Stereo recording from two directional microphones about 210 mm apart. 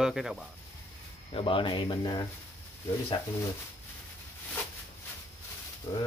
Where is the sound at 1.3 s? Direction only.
25° left (ahead or behind).